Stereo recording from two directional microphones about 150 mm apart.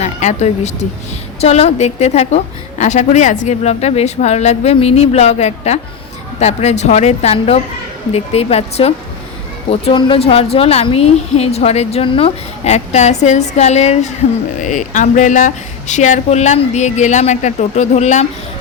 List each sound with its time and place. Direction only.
0.0 s a woman's voice: 50° left (ahead or behind)